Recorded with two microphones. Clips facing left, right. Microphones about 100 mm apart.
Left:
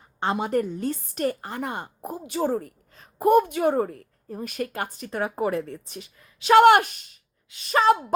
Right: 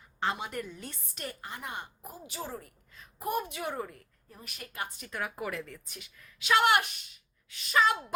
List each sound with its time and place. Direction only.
0.0 s a woman's voice: 35° left (ahead or behind)
3.2 s a woman's voice: 55° left (ahead or behind); by 6.5 s 30° left (ahead or behind)
6.5 s a woman's voice: 50° left (ahead or behind)